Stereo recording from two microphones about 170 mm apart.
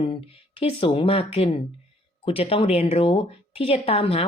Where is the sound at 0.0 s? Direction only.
30° left (ahead or behind).